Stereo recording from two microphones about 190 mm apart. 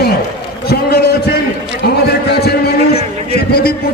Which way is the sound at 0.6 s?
55° left (ahead or behind).